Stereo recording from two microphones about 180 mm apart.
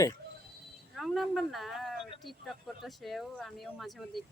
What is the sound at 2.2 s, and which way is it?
Speech, centre (ahead or behind).